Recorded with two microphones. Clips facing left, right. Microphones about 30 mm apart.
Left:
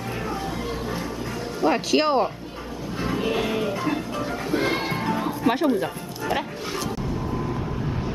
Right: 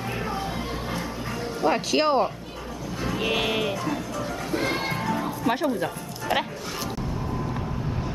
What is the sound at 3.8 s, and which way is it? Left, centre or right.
Music, left.